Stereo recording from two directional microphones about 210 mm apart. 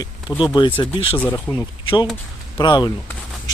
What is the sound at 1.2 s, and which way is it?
Speech, 10° left (ahead or behind).